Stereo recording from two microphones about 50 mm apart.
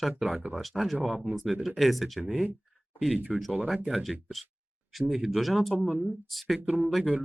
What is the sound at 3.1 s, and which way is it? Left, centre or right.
Speech, right.